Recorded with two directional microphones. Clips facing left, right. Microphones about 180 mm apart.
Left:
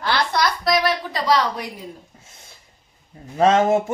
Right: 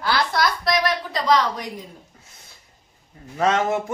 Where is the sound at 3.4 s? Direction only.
25° left (ahead or behind).